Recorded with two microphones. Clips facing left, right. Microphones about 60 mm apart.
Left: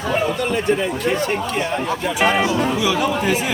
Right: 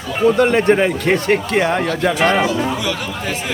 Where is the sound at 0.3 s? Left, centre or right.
Right.